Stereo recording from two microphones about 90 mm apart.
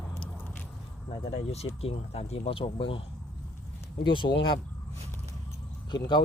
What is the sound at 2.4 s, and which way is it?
Speech, 85° left.